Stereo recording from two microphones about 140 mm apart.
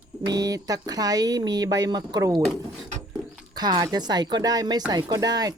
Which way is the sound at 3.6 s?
30° right (ahead or behind).